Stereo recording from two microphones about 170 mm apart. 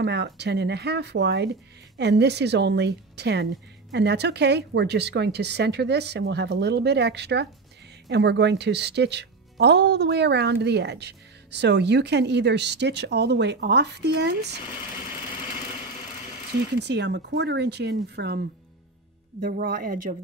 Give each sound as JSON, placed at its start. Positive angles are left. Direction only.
{"t": 0.0, "sound": "speech", "side_deg": -90}
{"t": 16.8, "sound": "speech", "side_deg": -90}
{"t": 19.4, "sound": "speech", "side_deg": -65}